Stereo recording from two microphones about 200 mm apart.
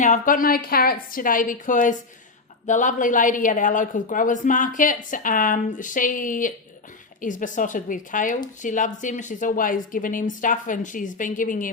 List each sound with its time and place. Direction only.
0.0 s a woman's voice: 40° left (ahead or behind)